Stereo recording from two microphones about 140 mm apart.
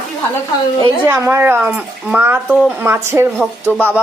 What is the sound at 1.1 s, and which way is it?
Speech, 15° right (ahead or behind).